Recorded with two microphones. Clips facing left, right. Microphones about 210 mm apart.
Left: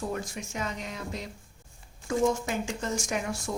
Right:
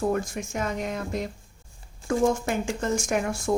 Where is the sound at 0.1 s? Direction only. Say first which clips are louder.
Right 7 dB; 50° right (ahead or behind).